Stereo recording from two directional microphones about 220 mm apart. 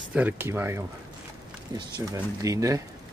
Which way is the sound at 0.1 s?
10° right (ahead or behind).